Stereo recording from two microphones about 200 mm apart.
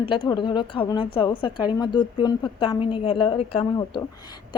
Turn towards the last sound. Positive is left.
turn(degrees=20)  # may be behind; listen again after turning